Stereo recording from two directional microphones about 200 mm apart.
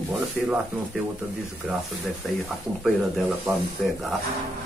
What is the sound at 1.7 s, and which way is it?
Speech, centre (ahead or behind).